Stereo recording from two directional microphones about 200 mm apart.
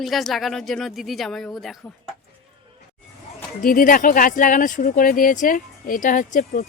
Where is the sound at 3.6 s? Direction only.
45° left (ahead or behind).